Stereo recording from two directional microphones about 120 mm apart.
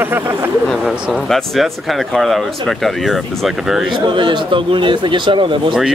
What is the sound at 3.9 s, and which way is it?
Speech, 40° right (ahead or behind).